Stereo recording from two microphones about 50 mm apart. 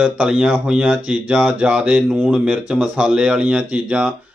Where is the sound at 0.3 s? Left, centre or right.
Centre.